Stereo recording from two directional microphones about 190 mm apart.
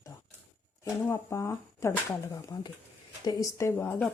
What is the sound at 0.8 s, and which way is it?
Speech, 15° left (ahead or behind).